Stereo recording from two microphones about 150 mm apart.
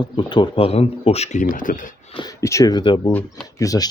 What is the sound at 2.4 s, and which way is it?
Speech, 20° left (ahead or behind).